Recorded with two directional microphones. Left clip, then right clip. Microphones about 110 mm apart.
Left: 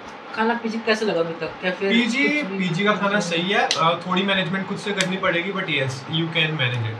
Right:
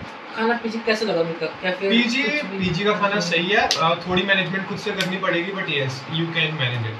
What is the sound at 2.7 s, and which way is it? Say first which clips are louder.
Speech: even; 35° left (ahead or behind).